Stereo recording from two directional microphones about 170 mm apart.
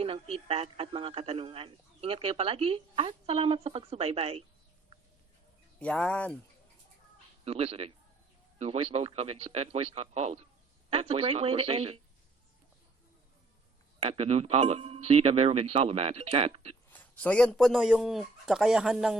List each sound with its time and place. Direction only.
0.0 s speech: 35° right (ahead or behind)
5.8 s speech: 5° left (ahead or behind)
7.4 s speech: 35° right (ahead or behind)
14.1 s speech: 35° right (ahead or behind)
16.9 s a man's voice: 10° left (ahead or behind)